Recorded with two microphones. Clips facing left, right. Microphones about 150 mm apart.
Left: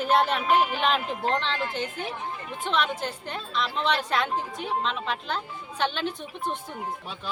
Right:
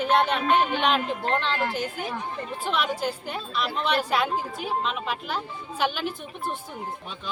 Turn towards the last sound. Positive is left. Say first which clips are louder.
# even
turn(degrees=-5)  # may be behind; listen again after turning